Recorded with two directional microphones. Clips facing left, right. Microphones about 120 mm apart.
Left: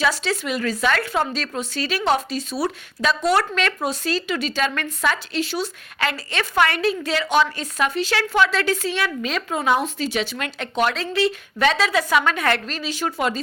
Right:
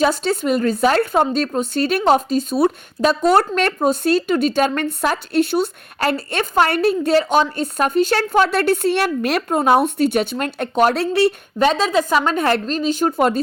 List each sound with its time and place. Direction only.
0.0 s a woman's voice: 45° right (ahead or behind)
10.9 s speech: 60° right (ahead or behind)
11.6 s a woman's voice: 45° right (ahead or behind)